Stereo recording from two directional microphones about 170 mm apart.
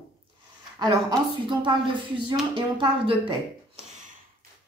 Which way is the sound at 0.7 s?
25° right (ahead or behind).